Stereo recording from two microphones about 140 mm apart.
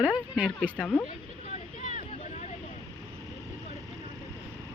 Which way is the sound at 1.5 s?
55° left (ahead or behind).